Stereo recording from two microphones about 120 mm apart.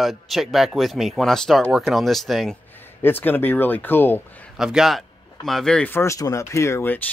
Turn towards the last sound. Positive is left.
turn(degrees=20)  # may be behind; listen again after turning